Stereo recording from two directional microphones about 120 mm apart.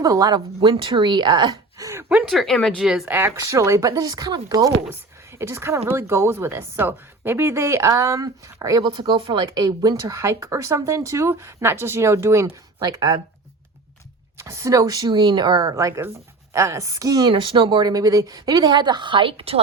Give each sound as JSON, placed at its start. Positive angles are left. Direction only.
{"t": 0.0, "sound": "a woman's voice", "side_deg": -30}
{"t": 1.9, "sound": "gasp", "side_deg": -20}
{"t": 2.1, "sound": "speech", "side_deg": 0}
{"t": 3.2, "sound": "a woman's voice", "side_deg": -20}
{"t": 9.0, "sound": "speech", "side_deg": -45}
{"t": 9.5, "sound": "speech", "side_deg": -35}
{"t": 12.8, "sound": "a woman's voice", "side_deg": -35}
{"t": 14.3, "sound": "a woman's voice", "side_deg": -25}
{"t": 15.7, "sound": "a woman's voice", "side_deg": -25}